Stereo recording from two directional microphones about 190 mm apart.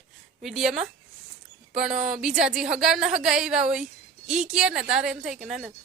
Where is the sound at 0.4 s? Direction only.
Centre (ahead or behind).